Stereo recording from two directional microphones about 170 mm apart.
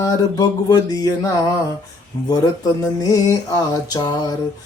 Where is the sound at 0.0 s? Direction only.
20° left (ahead or behind).